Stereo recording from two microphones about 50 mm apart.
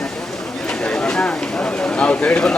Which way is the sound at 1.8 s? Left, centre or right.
Left.